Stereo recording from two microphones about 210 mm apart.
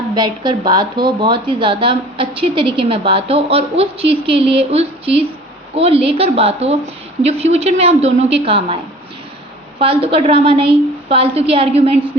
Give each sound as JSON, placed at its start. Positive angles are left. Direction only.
{"t": 0.1, "sound": "a woman's voice", "side_deg": -20}
{"t": 9.8, "sound": "speech", "side_deg": -25}